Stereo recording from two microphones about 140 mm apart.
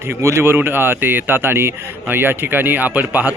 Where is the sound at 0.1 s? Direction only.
20° right (ahead or behind).